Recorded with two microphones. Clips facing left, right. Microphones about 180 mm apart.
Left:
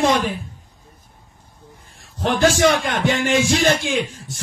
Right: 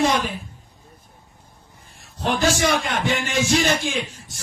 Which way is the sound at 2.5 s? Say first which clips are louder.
Left 4 dB; 55° left (ahead or behind).